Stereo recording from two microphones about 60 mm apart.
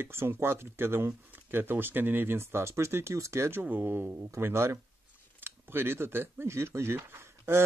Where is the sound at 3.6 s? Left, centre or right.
Right.